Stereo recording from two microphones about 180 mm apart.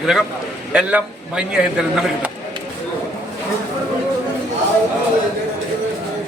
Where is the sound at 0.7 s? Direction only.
5° right (ahead or behind).